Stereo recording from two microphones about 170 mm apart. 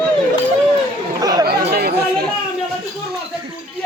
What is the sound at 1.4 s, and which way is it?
Chatter, 65° right (ahead or behind).